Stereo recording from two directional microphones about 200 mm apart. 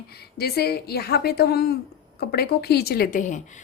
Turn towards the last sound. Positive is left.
turn(degrees=40)  # may be behind; listen again after turning